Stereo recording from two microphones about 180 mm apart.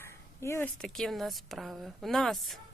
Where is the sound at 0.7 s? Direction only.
Centre (ahead or behind).